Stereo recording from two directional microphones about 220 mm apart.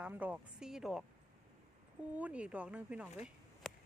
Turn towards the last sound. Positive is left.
turn(degrees=0)  # may be behind; listen again after turning